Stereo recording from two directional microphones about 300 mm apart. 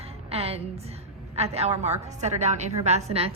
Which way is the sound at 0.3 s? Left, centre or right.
Centre.